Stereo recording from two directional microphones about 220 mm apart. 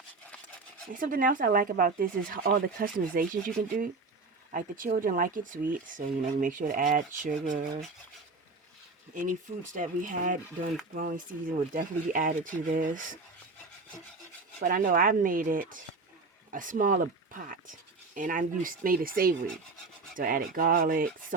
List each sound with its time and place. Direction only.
0.9 s speech: 40° right (ahead or behind)
9.1 s speech: 35° right (ahead or behind)
14.6 s speech: 40° right (ahead or behind)